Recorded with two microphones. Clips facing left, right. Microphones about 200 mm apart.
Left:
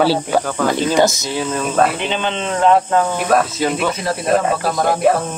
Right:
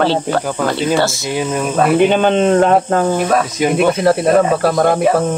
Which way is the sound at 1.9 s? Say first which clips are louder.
Right 10 dB; 50° right (ahead or behind).